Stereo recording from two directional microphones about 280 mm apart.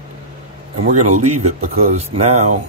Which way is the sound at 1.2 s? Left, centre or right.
Right.